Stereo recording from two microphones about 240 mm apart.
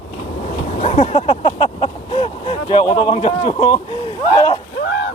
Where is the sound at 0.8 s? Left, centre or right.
Left.